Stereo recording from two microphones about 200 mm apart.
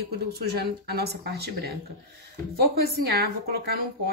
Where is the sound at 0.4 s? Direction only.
50° right (ahead or behind).